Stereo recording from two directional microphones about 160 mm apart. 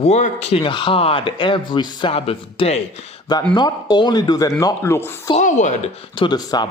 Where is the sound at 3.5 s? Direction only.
25° left (ahead or behind).